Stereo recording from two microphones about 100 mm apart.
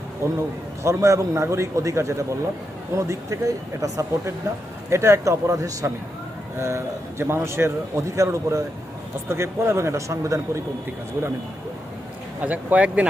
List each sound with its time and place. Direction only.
0.2 s a man's voice: 30° right (ahead or behind)
12.4 s speech: 15° right (ahead or behind)